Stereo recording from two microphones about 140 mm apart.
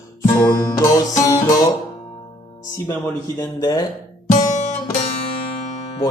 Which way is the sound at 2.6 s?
25° left (ahead or behind).